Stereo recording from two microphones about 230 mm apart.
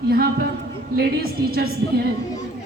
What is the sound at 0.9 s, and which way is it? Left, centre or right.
Speech, right.